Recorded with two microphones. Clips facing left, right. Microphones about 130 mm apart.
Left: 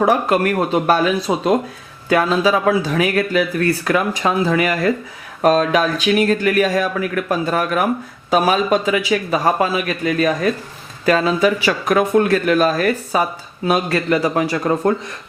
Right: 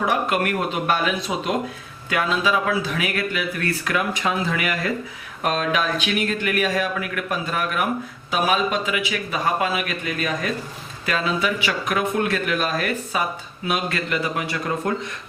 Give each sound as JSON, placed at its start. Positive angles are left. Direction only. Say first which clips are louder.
{"t": 0.0, "sound": "speech", "louder": "left 6 dB", "side_deg": 35}